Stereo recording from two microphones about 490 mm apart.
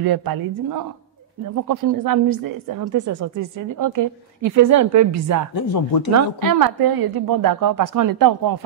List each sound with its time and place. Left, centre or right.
0.0 s a woman's voice: right
5.5 s speech: left
6.1 s a woman's voice: right